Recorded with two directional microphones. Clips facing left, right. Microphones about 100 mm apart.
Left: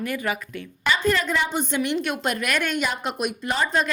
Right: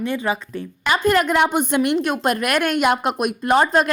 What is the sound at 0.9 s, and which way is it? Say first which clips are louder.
A woman's voice: right 6 dB; 50° right (ahead or behind).